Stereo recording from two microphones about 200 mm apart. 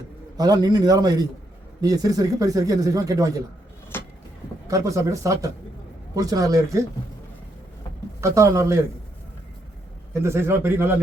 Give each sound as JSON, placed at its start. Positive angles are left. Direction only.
{"t": 0.3, "sound": "a man's voice", "side_deg": -20}
{"t": 3.9, "sound": "vehicle", "side_deg": 10}
{"t": 4.7, "sound": "speech", "side_deg": -15}
{"t": 8.2, "sound": "speech", "side_deg": -15}
{"t": 10.2, "sound": "speech", "side_deg": -10}